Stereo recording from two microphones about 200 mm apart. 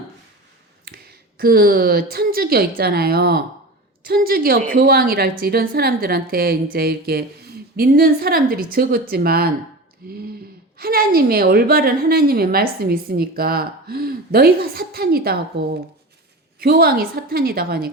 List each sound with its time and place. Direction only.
0.9 s a woman's voice: 50° right (ahead or behind)
10.8 s a woman's voice: 50° right (ahead or behind)